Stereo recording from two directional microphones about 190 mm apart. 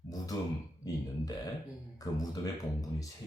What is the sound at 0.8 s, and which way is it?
Speech, 20° left (ahead or behind).